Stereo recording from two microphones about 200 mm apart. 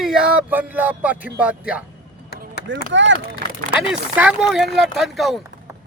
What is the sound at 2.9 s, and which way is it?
Speech, 65° right (ahead or behind).